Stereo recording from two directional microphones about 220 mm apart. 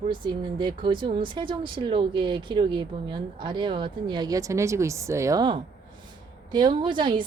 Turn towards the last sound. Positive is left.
turn(degrees=-20)  # may be behind; listen again after turning